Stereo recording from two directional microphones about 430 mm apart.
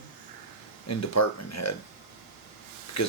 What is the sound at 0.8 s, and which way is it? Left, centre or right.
Speech, left.